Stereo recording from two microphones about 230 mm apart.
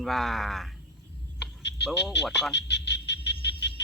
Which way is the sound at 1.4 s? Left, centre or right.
Left.